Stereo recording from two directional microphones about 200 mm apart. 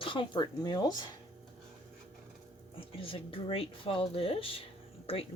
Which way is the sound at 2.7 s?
25° left (ahead or behind).